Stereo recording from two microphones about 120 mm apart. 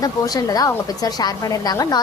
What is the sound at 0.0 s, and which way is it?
A woman's voice, 30° left (ahead or behind).